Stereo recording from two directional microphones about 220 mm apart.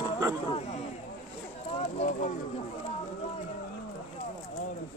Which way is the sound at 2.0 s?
35° left (ahead or behind).